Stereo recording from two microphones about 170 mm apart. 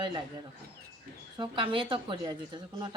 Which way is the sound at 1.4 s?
30° right (ahead or behind).